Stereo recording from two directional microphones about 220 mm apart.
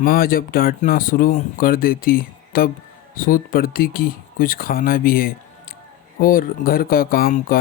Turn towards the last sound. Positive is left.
turn(degrees=40)  # may be behind; listen again after turning